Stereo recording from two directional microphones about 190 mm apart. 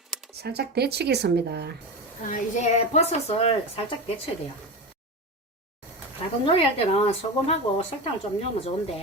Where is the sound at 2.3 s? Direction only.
35° left (ahead or behind).